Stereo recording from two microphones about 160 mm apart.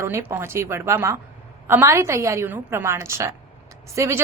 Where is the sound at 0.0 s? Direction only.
15° right (ahead or behind).